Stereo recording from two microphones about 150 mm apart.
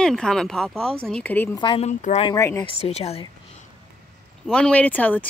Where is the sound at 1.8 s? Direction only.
50° left (ahead or behind).